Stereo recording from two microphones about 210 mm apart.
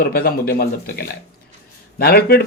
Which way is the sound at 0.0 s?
45° left (ahead or behind).